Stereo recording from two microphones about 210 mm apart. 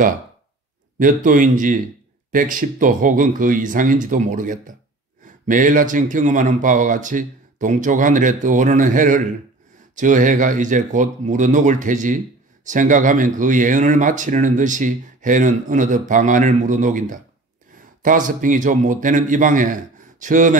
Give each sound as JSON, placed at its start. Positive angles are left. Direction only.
{"t": 0.9, "sound": "speech", "side_deg": -40}